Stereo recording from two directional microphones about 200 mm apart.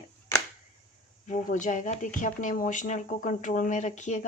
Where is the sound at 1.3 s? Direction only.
40° left (ahead or behind).